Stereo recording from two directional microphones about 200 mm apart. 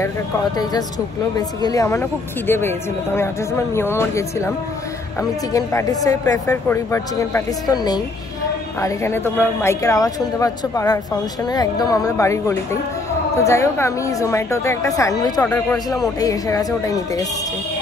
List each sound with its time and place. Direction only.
1.3 s speech: 15° left (ahead or behind)
5.5 s speech: 15° left (ahead or behind)